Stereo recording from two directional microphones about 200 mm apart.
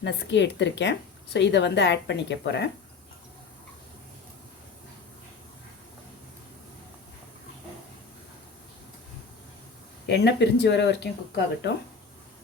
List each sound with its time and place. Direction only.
0.0 s a woman's voice: 60° left (ahead or behind)
10.1 s a woman's voice: 55° left (ahead or behind)